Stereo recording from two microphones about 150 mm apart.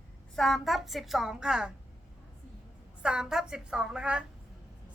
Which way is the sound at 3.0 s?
5° right (ahead or behind).